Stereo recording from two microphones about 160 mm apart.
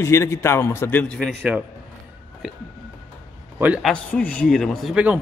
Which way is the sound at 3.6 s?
10° right (ahead or behind).